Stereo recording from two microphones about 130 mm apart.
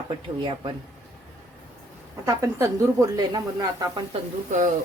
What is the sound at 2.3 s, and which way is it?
A woman's voice, 25° right (ahead or behind).